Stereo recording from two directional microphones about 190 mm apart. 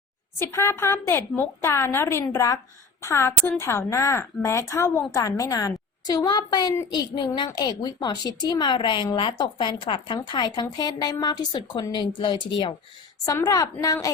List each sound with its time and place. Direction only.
0.3 s a woman's voice: 15° left (ahead or behind)